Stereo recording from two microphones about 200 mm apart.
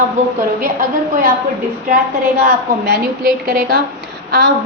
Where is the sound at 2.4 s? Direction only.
45° right (ahead or behind).